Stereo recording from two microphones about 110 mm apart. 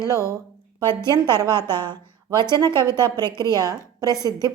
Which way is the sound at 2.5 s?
40° right (ahead or behind).